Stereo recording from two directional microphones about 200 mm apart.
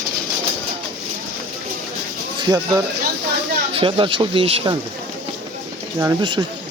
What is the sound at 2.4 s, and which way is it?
Speech, 20° right (ahead or behind).